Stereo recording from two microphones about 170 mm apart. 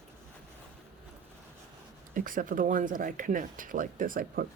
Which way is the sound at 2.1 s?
50° right (ahead or behind).